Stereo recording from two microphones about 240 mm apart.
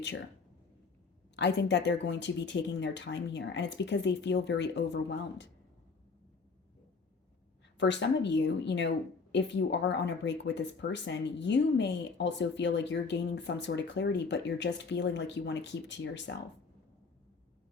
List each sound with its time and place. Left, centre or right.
1.4 s speech: left
7.8 s speech: left